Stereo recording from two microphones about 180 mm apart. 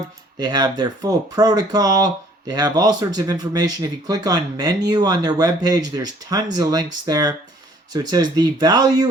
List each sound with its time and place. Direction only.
0.3 s speech: 25° right (ahead or behind)